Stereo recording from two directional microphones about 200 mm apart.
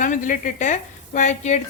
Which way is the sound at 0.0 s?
40° left (ahead or behind).